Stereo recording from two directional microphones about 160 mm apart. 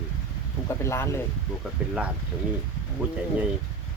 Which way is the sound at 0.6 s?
15° left (ahead or behind).